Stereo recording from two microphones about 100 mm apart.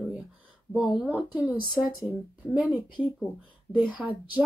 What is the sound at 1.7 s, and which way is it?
Speech, centre (ahead or behind).